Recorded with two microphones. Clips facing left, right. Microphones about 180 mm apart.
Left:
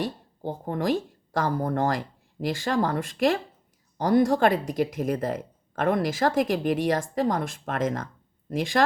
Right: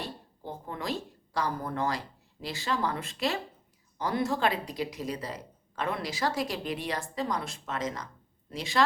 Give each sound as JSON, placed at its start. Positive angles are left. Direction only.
{"t": 0.0, "sound": "speech", "side_deg": 45}